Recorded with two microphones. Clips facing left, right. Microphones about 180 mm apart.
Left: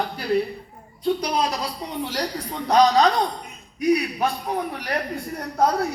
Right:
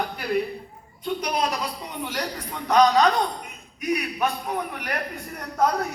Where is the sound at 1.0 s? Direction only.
35° left (ahead or behind).